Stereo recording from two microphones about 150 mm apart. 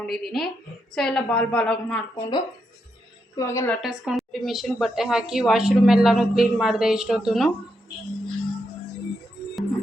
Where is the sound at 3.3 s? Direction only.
20° left (ahead or behind).